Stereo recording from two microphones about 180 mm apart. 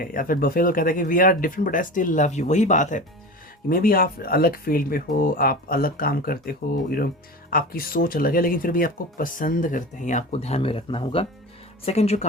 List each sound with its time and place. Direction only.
0.0 s speech: 50° left (ahead or behind)
3.7 s speech: 55° left (ahead or behind); by 12.2 s 35° left (ahead or behind)